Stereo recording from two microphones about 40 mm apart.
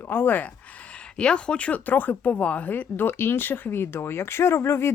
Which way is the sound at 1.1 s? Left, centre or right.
Left.